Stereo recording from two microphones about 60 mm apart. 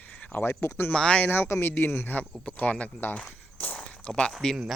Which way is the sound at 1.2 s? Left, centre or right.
Left.